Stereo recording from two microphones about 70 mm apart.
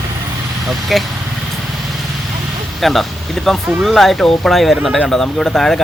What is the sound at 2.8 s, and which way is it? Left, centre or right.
Speech, centre.